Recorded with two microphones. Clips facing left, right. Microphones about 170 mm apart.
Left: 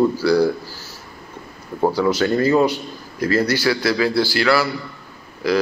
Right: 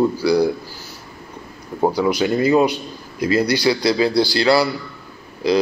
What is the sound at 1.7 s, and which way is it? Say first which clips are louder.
A man's voice: even; 15° right (ahead or behind).